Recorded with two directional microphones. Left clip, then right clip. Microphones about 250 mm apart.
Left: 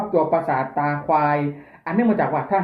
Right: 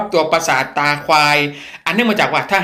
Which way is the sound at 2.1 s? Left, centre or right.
Right.